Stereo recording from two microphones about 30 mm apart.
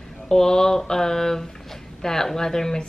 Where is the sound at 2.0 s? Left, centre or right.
Centre.